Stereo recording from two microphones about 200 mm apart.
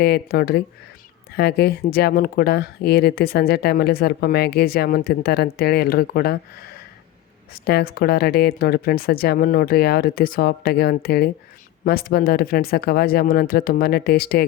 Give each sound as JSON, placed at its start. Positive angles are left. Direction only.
{"t": 0.0, "sound": "speech", "side_deg": 50}
{"t": 7.5, "sound": "speech", "side_deg": 50}